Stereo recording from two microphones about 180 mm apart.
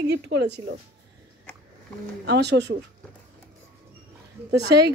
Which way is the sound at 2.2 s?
70° right (ahead or behind).